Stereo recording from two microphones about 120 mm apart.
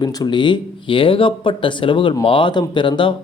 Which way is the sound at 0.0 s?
35° left (ahead or behind).